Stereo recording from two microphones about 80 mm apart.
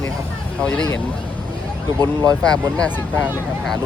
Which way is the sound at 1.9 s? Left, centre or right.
Right.